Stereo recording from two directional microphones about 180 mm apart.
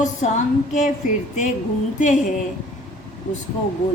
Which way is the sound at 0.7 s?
40° left (ahead or behind).